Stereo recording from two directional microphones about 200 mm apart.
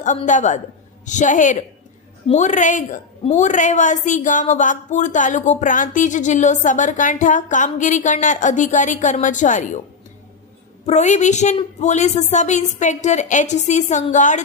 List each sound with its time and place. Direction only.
0.0 s a woman's voice: 40° left (ahead or behind)
10.8 s a woman's voice: 35° left (ahead or behind)